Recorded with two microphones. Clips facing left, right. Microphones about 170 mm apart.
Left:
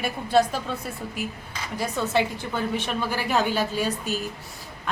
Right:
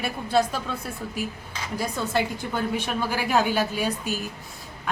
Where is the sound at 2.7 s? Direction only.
10° right (ahead or behind).